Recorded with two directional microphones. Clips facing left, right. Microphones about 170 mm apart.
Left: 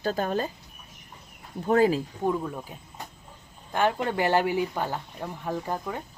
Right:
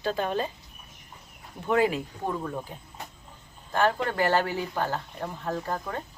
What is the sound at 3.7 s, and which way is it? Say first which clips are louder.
Speech: even; 15° left (ahead or behind).